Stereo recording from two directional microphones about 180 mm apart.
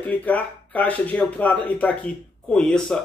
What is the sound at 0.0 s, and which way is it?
Speech, 10° left (ahead or behind).